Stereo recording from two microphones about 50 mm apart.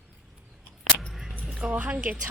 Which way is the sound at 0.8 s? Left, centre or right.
Centre.